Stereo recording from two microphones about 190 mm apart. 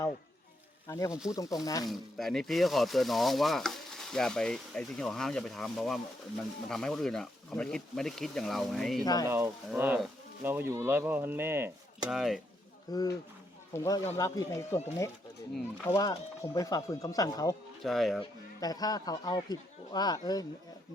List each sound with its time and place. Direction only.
0.9 s speech: 20° left (ahead or behind)
1.9 s speech: centre (ahead or behind)
9.2 s speech: 15° right (ahead or behind)
12.1 s speech: centre (ahead or behind)
12.9 s speech: 20° left (ahead or behind)
15.9 s speech: 20° left (ahead or behind)
17.8 s speech: centre (ahead or behind)
18.2 s speech: 20° left (ahead or behind)